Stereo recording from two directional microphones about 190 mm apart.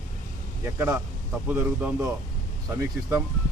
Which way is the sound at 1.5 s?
10° right (ahead or behind).